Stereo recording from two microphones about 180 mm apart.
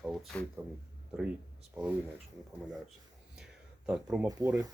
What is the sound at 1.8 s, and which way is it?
Speech, 5° right (ahead or behind).